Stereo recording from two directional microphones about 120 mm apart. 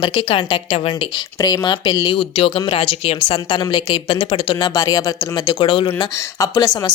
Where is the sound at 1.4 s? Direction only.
35° left (ahead or behind).